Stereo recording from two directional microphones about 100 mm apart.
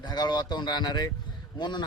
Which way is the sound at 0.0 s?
45° left (ahead or behind).